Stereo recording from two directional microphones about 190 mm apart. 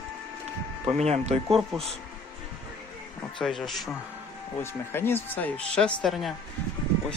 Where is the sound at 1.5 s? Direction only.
Centre (ahead or behind).